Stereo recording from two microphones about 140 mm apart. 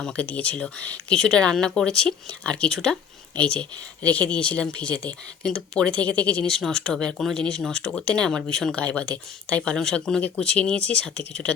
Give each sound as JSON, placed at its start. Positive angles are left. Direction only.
{"t": 0.0, "sound": "speech", "side_deg": 10}